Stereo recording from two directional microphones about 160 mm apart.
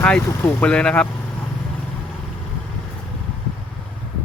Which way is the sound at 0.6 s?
5° left (ahead or behind).